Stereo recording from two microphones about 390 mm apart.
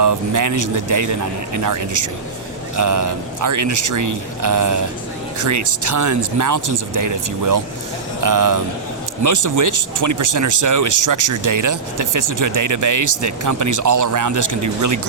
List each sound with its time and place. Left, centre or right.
0.0 s speech: right